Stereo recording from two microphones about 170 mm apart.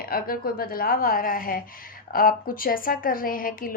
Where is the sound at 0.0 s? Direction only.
60° left (ahead or behind).